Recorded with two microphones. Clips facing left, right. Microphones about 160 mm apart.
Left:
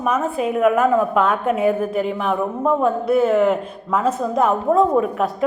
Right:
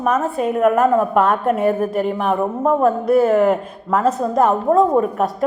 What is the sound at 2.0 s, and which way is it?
Speech, 45° right (ahead or behind).